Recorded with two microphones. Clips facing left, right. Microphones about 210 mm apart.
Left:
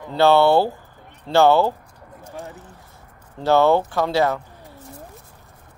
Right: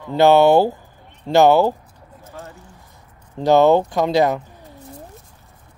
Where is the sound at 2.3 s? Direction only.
15° left (ahead or behind).